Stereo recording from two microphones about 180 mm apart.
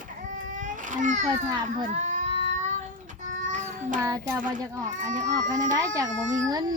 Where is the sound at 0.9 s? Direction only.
45° right (ahead or behind).